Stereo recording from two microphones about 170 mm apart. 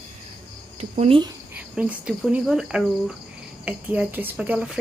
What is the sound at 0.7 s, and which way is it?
Speech, 35° right (ahead or behind).